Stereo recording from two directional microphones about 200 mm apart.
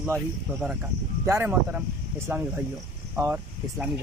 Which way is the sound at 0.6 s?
10° right (ahead or behind).